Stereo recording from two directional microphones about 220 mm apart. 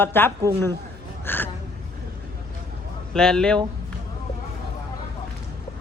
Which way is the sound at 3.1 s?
5° left (ahead or behind).